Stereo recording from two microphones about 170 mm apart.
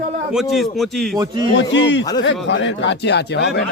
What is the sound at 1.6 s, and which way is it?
Speech, 90° left.